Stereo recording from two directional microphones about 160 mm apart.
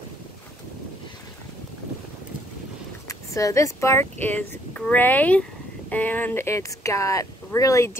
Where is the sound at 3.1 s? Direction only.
20° left (ahead or behind).